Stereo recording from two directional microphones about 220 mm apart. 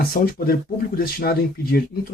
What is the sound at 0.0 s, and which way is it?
Speech, 45° left (ahead or behind).